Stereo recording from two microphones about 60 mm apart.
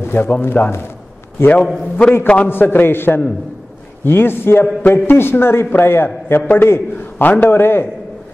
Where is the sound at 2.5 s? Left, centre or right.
Left.